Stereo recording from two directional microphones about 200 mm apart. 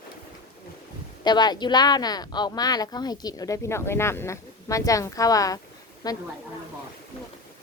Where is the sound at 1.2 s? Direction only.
20° left (ahead or behind).